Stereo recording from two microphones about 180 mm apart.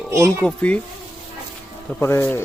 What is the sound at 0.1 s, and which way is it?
Speech, 15° right (ahead or behind).